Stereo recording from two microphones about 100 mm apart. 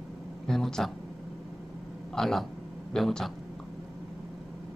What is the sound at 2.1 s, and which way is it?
Speech, 5° left (ahead or behind).